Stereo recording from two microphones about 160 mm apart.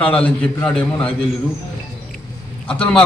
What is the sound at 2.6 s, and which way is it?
Speech, 5° left (ahead or behind).